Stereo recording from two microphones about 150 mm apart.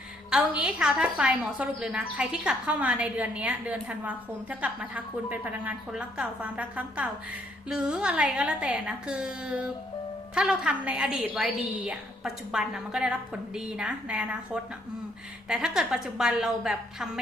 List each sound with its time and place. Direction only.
0.3 s a woman's voice: 5° right (ahead or behind)